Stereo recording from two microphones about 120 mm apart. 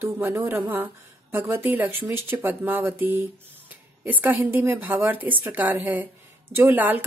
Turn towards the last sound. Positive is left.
turn(degrees=-15)  # may be behind; listen again after turning